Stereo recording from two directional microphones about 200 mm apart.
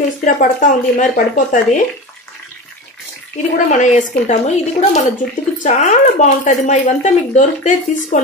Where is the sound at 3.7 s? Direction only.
35° left (ahead or behind).